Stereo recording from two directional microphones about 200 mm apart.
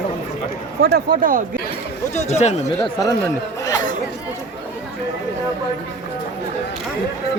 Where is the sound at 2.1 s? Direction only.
35° left (ahead or behind).